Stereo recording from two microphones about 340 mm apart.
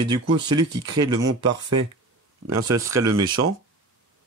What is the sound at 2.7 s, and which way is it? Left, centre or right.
Speech, centre.